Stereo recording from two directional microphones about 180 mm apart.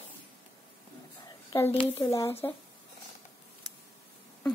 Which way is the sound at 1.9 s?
15° left (ahead or behind).